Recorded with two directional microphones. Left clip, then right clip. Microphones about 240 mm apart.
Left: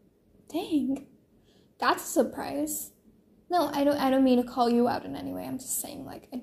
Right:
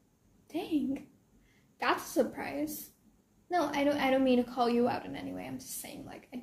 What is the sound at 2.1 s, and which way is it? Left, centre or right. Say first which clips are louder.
A woman's voice: left 4 dB; centre.